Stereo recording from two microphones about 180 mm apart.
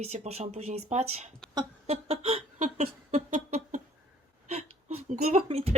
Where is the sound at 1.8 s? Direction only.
35° right (ahead or behind).